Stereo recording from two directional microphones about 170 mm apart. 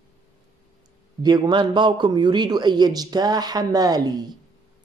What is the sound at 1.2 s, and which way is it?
Speech, 25° right (ahead or behind).